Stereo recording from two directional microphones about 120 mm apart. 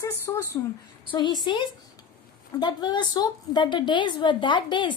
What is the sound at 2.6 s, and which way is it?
A woman's voice, 40° left (ahead or behind).